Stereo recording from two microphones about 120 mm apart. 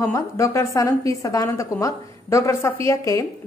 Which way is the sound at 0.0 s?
25° left (ahead or behind).